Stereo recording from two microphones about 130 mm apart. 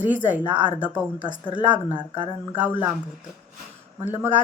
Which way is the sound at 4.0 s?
15° right (ahead or behind).